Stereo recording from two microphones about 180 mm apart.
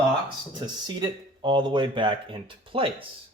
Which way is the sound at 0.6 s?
25° right (ahead or behind).